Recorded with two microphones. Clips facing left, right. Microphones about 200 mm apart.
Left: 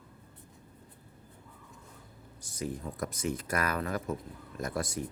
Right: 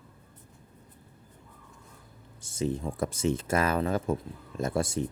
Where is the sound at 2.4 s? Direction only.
25° right (ahead or behind).